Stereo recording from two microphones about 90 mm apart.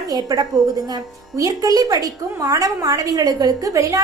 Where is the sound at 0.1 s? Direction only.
45° right (ahead or behind).